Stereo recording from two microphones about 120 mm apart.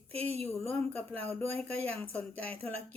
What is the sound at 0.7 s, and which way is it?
Speech, 15° left (ahead or behind).